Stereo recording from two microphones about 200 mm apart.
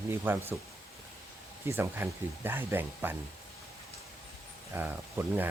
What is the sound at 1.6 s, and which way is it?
Speech, 10° right (ahead or behind).